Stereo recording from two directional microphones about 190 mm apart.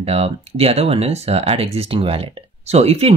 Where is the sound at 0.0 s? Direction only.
35° right (ahead or behind).